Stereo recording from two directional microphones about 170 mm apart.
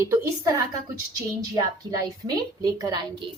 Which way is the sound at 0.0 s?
15° right (ahead or behind).